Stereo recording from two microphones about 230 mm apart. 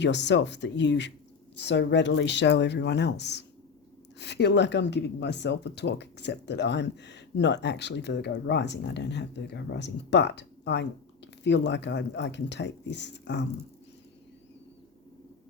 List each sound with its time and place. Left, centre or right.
0.0 s speech: left